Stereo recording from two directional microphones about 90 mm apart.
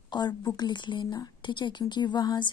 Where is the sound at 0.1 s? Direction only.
50° left (ahead or behind).